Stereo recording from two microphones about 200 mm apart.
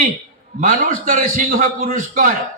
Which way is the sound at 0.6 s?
45° right (ahead or behind).